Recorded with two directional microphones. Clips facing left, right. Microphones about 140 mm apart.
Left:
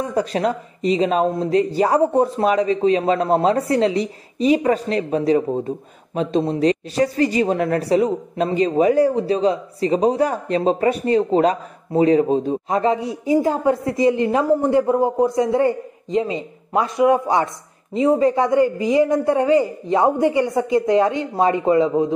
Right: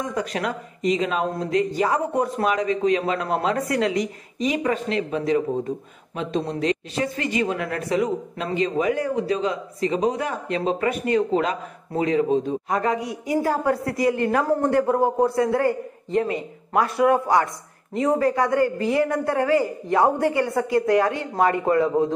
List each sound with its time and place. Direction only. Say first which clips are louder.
0.0 s a woman's voice: left 6 dB; 35° left (ahead or behind); by 22.1 s 15° left (ahead or behind)